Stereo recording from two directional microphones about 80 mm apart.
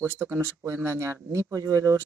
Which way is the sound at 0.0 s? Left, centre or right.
Right.